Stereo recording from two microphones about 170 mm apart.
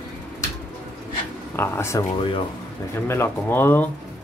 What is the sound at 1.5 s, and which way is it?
Speech, 15° left (ahead or behind).